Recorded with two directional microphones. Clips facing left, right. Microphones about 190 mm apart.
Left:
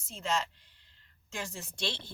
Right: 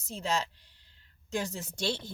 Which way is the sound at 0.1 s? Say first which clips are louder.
Right 1 dB; 35° right (ahead or behind).